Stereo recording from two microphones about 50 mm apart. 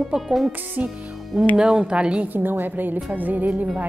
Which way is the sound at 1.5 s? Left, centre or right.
Centre.